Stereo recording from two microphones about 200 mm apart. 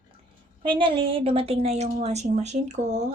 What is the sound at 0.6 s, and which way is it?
A woman's voice, 25° right (ahead or behind).